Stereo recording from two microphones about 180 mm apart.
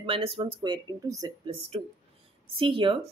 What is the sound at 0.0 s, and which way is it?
Speech, 30° right (ahead or behind).